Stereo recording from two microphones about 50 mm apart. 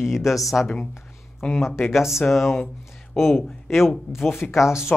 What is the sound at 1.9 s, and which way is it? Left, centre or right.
Speech, centre.